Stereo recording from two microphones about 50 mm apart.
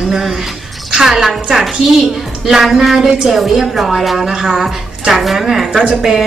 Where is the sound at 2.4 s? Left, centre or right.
Centre.